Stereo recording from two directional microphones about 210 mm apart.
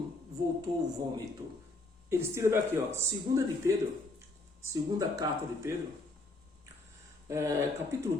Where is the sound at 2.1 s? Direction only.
10° right (ahead or behind).